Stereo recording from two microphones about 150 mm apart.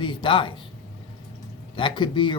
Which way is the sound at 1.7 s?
30° left (ahead or behind).